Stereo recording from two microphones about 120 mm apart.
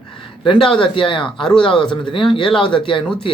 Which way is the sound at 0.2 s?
45° left (ahead or behind).